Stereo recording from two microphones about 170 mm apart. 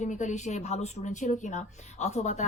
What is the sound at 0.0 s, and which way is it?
A woman's voice, 45° left (ahead or behind).